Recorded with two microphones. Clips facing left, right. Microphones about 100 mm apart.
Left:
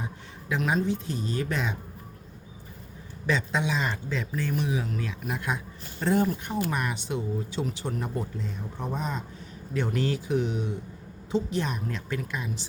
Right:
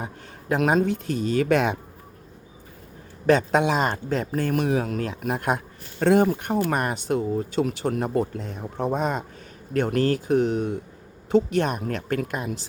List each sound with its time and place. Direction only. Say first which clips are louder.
0.0 s speech: right 3 dB; 45° right (ahead or behind)
0.6 s speech: right 5 dB; 70° right (ahead or behind)
3.2 s speech: right 8 dB; 55° right (ahead or behind)
6.0 s speech: right 6 dB; 85° right
6.7 s speech: right 6 dB; 50° right (ahead or behind); by 9.2 s 70° right (ahead or behind)
9.7 s speech: right 6 dB; 55° right (ahead or behind)